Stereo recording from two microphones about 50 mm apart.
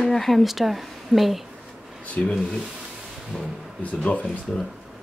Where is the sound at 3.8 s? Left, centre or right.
Left.